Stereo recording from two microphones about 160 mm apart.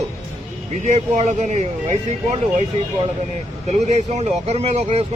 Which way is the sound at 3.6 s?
45° right (ahead or behind).